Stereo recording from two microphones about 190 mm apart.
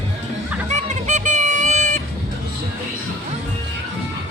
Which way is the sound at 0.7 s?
40° right (ahead or behind).